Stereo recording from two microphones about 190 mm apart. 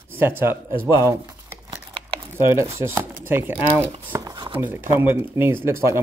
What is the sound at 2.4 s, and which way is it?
Speech, 15° right (ahead or behind).